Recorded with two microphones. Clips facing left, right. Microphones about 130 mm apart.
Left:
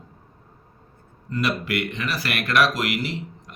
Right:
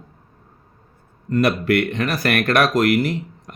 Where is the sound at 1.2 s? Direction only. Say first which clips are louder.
Right 8 dB; 55° right (ahead or behind).